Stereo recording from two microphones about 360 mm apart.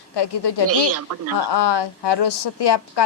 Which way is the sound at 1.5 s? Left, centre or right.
Left.